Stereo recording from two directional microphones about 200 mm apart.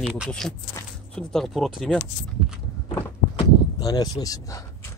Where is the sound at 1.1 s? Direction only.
5° left (ahead or behind).